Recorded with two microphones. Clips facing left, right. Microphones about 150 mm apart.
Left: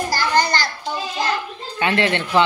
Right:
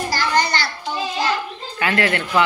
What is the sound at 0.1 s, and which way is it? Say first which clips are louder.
Children playing: left 1 dB; 45° left (ahead or behind).